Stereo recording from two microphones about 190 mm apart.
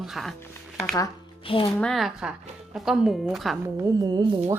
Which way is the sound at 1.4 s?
30° left (ahead or behind).